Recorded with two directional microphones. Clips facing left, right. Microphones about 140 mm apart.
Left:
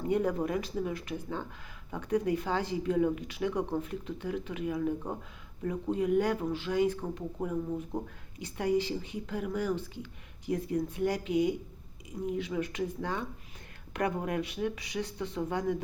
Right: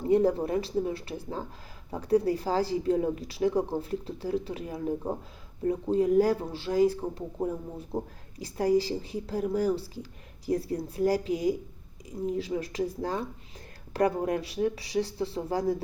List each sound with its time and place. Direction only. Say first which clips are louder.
0.0 s speech: right 5 dB; 30° right (ahead or behind)